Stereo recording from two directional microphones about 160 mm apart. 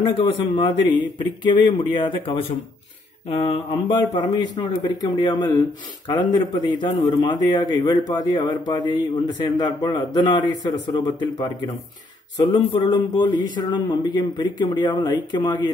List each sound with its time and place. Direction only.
0.0 s speech: 30° left (ahead or behind)